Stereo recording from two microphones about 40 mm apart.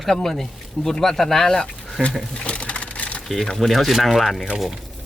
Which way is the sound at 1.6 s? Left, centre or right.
Left.